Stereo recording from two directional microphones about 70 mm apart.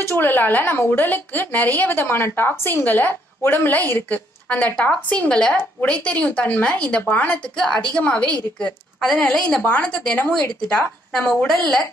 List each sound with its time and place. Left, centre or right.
0.0 s a woman's voice: left
7.5 s a woman's voice: centre